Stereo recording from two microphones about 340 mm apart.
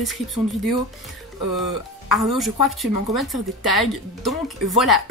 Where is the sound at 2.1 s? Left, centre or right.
Centre.